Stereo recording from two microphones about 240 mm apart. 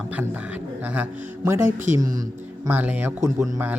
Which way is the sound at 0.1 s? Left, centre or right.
Centre.